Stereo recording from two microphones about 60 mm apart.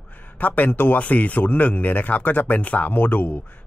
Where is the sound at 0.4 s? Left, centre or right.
Left.